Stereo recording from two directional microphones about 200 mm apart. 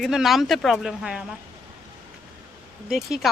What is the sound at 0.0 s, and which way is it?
Speech, centre (ahead or behind).